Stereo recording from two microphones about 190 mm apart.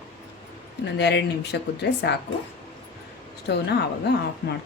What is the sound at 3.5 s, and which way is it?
Speech, 60° left (ahead or behind).